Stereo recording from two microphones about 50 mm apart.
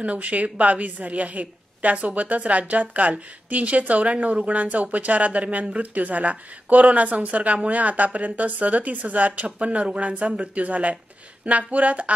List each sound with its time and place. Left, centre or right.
0.0 s speech: right